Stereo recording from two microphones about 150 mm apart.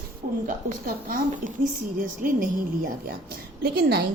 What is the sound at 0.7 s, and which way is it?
A woman's voice, 60° right (ahead or behind).